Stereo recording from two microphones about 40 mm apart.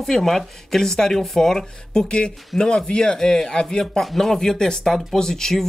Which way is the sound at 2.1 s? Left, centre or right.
Left.